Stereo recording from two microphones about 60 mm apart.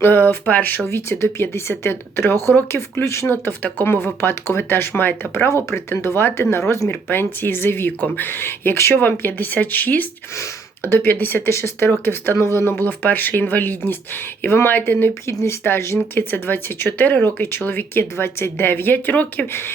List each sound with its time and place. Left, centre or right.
0.0 s speech: left
0.9 s speech: left
3.2 s speech: left
7.1 s speech: left
10.3 s speech: left
11.5 s speech: left
12.8 s speech: left
15.3 s speech: left
16.3 s speech: left